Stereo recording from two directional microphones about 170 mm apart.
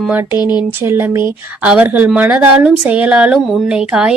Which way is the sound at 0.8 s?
15° right (ahead or behind).